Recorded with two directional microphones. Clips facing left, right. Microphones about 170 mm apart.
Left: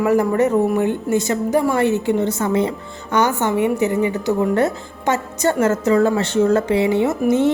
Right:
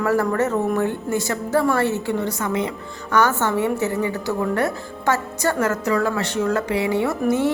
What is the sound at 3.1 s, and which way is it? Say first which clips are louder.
A woman's voice: left 1 dB; 15° left (ahead or behind).